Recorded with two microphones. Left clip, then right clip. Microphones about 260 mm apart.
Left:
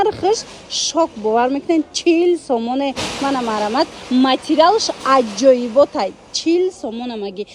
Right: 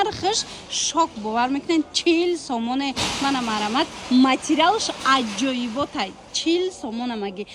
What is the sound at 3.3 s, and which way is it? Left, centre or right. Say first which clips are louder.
A woman's voice: left 5 dB; right.